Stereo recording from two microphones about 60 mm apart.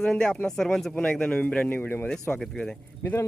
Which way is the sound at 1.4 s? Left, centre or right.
Left.